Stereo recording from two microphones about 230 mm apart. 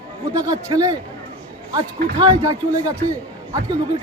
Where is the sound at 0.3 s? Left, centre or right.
Centre.